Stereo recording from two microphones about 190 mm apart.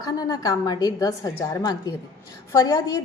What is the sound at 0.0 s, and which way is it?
A woman's voice, 20° left (ahead or behind).